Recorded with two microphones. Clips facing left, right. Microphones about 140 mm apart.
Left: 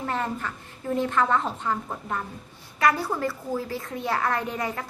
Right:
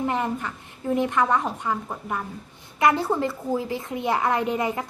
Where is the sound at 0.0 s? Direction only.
15° right (ahead or behind).